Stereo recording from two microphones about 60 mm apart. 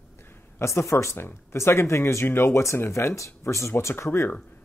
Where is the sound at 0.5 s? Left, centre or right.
Left.